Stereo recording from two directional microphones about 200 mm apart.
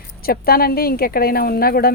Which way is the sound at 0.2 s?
50° left (ahead or behind).